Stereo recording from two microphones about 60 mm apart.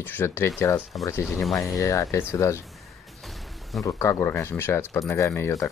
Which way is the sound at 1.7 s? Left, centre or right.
Left.